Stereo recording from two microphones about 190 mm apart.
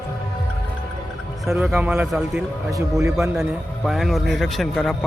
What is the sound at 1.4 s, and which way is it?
Speech, 5° right (ahead or behind).